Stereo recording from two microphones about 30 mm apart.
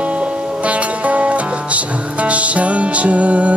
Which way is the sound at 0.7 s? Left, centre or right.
Right.